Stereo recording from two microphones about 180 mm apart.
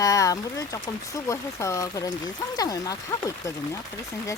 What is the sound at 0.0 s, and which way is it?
Speech, 20° left (ahead or behind).